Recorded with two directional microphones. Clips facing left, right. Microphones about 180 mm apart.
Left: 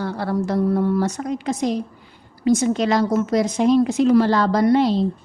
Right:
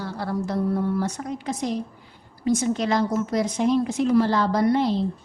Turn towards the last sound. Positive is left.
turn(degrees=90)